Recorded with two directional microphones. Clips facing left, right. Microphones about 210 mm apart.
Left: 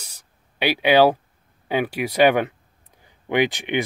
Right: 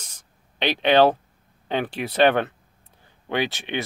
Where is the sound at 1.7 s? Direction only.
10° left (ahead or behind).